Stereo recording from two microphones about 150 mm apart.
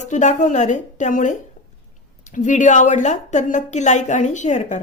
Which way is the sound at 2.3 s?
55° left (ahead or behind).